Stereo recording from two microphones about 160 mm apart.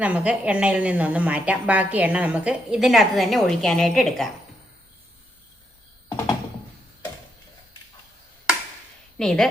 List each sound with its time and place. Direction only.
0.0 s a woman's voice: 10° right (ahead or behind)
6.1 s a sound: 25° left (ahead or behind)
9.1 s speech: 5° left (ahead or behind)